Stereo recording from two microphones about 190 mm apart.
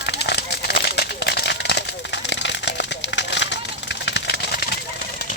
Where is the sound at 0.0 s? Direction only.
60° left (ahead or behind).